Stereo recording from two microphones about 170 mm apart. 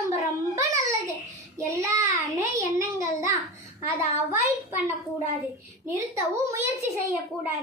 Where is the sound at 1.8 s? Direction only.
20° right (ahead or behind).